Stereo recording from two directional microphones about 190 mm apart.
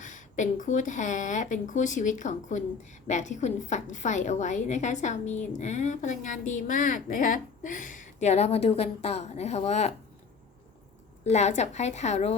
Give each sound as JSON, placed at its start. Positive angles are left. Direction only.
{"t": 0.0, "sound": "a woman's voice", "side_deg": 40}
{"t": 11.2, "sound": "a woman's voice", "side_deg": 35}